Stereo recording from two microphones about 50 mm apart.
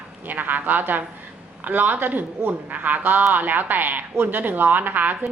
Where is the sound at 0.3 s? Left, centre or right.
Right.